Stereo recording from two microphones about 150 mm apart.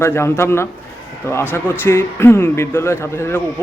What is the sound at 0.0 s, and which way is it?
Speech, 15° left (ahead or behind).